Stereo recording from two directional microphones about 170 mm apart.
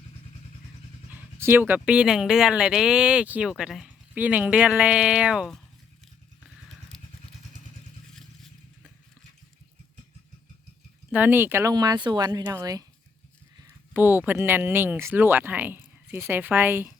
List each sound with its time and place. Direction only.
1.1 s speech: 15° right (ahead or behind)
8.1 s vehicle: centre (ahead or behind)
11.1 s speech: 10° right (ahead or behind)
13.9 s speech: 10° right (ahead or behind)